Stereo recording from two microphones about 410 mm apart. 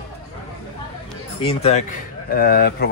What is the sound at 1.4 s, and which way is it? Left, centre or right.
Speech, centre.